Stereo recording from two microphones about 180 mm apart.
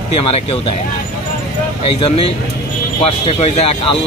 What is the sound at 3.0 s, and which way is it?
Speech, 35° left (ahead or behind).